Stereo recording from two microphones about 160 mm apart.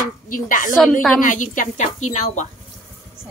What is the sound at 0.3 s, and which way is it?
A woman's voice, 55° left (ahead or behind).